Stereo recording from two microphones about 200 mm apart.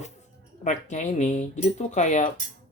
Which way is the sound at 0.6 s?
35° left (ahead or behind).